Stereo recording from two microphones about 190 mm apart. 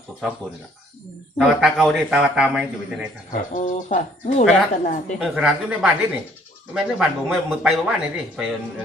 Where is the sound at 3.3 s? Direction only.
45° left (ahead or behind).